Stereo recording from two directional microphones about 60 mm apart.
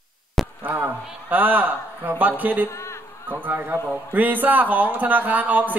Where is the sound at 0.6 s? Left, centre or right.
Right.